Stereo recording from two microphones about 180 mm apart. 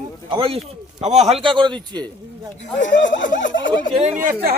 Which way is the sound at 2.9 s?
90° left.